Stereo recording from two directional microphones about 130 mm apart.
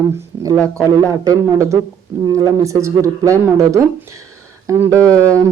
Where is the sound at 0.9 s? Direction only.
25° right (ahead or behind).